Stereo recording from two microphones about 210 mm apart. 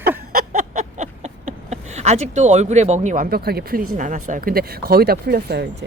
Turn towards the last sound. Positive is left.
turn(degrees=-50)  # may be behind; listen again after turning